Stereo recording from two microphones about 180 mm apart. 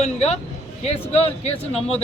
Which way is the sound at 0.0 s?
40° left (ahead or behind).